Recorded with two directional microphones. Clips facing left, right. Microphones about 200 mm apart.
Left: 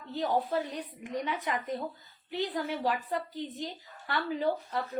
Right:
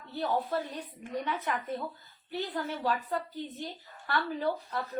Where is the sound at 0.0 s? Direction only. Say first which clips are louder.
Left 1 dB; 15° left (ahead or behind).